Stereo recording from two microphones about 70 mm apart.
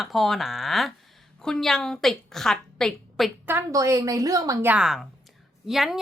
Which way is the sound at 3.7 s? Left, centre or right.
Right.